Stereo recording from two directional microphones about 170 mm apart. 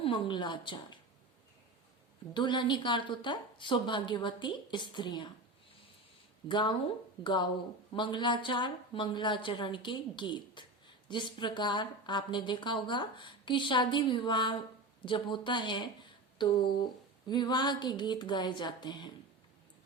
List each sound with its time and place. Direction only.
0.0 s speech: 30° left (ahead or behind)
2.3 s speech: 25° left (ahead or behind)
6.5 s speech: 25° left (ahead or behind)
7.9 s speech: 25° left (ahead or behind)